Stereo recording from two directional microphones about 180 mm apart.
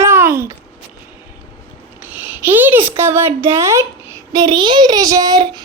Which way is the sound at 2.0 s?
10° right (ahead or behind).